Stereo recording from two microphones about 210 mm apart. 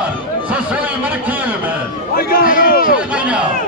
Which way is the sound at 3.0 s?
5° right (ahead or behind).